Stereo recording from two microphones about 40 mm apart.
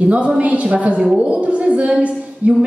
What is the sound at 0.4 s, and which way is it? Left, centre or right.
A woman's voice, right.